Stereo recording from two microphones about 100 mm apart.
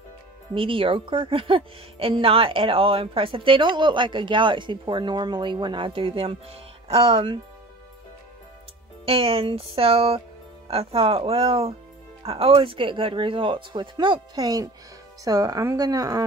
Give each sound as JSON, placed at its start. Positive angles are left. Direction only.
{"t": 0.6, "sound": "a woman's voice", "side_deg": -60}
{"t": 9.0, "sound": "a woman's voice", "side_deg": -65}